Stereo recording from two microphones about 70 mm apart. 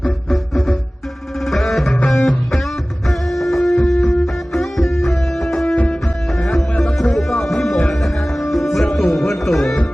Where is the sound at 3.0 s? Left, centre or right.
Centre.